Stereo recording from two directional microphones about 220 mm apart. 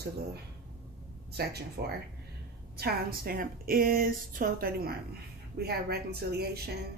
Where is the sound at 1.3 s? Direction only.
45° right (ahead or behind).